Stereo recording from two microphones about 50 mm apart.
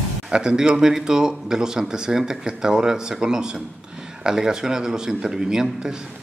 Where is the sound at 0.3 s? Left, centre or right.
Centre.